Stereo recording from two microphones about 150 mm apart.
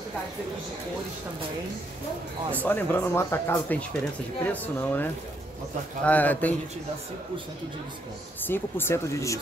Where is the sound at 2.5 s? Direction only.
10° left (ahead or behind).